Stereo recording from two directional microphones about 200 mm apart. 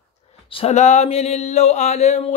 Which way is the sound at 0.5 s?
30° left (ahead or behind).